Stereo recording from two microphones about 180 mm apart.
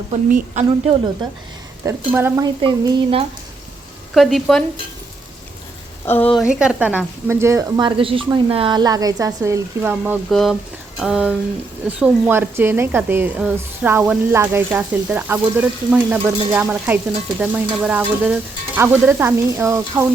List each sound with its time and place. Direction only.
0.1 s a woman's voice: 40° right (ahead or behind)
1.8 s speech: 15° right (ahead or behind)
2.6 s speech: 25° right (ahead or behind)
4.1 s stir: centre (ahead or behind)
6.1 s speech: 10° left (ahead or behind)
6.3 s speech: 5° right (ahead or behind)
10.2 s stir: centre (ahead or behind)
11.9 s speech: 10° right (ahead or behind)
17.4 s stir: 5° right (ahead or behind)
18.8 s speech: 10° right (ahead or behind)